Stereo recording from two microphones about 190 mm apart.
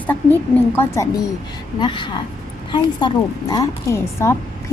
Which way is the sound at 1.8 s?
25° left (ahead or behind).